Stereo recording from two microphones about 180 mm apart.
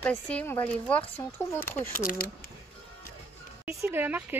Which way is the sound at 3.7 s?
15° right (ahead or behind).